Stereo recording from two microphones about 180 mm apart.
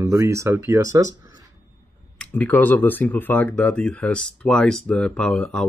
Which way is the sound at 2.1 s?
10° left (ahead or behind).